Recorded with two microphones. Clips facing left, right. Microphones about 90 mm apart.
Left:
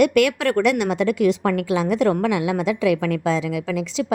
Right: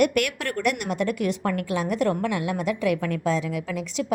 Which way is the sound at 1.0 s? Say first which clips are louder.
Left 6 dB; 90° left.